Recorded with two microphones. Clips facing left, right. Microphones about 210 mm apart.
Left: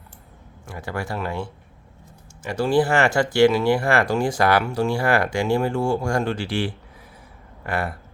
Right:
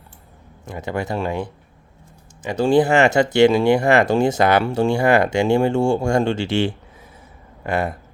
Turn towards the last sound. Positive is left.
turn(degrees=-20)  # may be behind; listen again after turning